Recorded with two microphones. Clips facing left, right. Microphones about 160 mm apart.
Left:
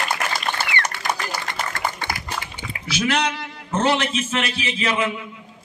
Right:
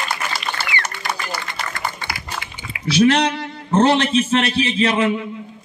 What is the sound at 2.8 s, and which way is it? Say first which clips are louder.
A man's voice: right 7 dB; 35° right (ahead or behind).